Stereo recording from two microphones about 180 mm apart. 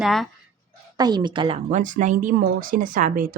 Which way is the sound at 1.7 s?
45° right (ahead or behind).